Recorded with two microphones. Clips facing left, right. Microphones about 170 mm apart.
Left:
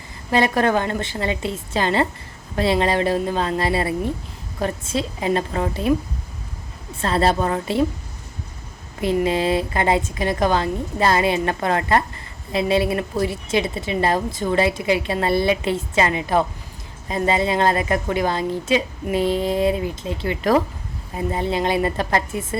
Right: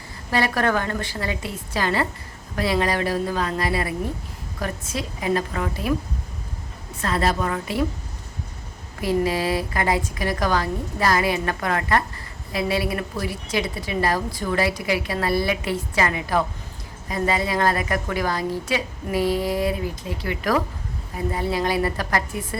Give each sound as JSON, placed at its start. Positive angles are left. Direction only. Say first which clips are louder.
{"t": 0.3, "sound": "a woman's voice", "louder": "left 4 dB", "side_deg": 20}
{"t": 7.0, "sound": "a woman's voice", "louder": "left 4 dB", "side_deg": 30}
{"t": 9.0, "sound": "a woman's voice", "louder": "left 2 dB", "side_deg": 20}